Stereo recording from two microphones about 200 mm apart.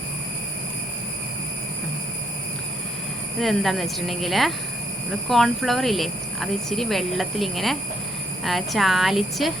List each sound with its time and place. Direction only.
3.4 s speech: centre (ahead or behind)